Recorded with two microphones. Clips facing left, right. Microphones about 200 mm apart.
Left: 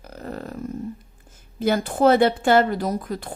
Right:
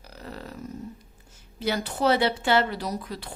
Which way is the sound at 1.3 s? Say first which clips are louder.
Left 6 dB; 50° left (ahead or behind).